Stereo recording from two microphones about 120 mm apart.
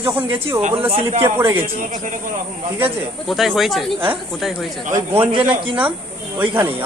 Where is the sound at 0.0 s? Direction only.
20° right (ahead or behind).